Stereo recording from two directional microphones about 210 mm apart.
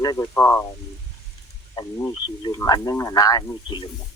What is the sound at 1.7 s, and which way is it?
Speech, 15° left (ahead or behind).